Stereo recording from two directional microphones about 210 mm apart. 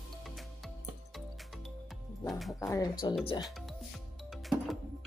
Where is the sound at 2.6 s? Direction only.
15° left (ahead or behind).